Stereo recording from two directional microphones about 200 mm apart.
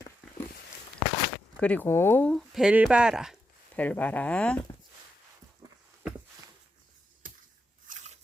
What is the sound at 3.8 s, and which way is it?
Speech, 10° left (ahead or behind).